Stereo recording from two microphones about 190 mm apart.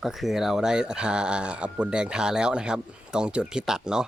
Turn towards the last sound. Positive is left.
turn(degrees=-5)  # may be behind; listen again after turning